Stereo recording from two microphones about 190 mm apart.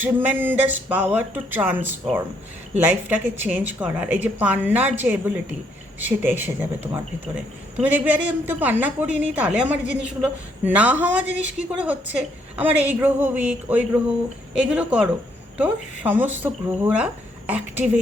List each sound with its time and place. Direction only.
0.0 s speech: 10° right (ahead or behind)